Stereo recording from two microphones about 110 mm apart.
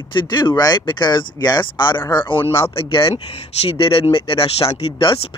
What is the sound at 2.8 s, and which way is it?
Speech, 55° left (ahead or behind).